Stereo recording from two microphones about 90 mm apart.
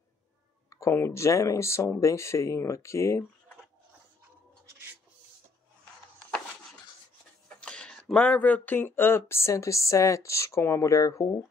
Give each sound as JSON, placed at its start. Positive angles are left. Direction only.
{"t": 0.7, "sound": "speech", "side_deg": 35}
{"t": 7.4, "sound": "speech", "side_deg": 10}